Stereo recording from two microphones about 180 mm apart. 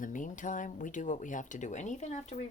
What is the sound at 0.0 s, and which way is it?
Speech, 45° left (ahead or behind).